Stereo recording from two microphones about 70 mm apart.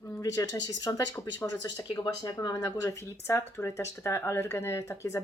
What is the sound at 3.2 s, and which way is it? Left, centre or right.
Speech, left.